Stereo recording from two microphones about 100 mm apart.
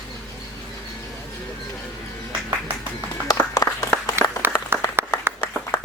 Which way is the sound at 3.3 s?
35° left (ahead or behind).